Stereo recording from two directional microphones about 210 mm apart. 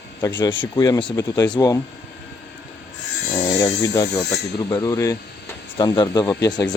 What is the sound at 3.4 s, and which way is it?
Speech, 15° left (ahead or behind).